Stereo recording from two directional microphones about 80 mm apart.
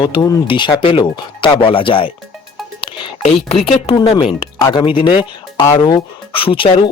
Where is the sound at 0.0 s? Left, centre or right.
Left.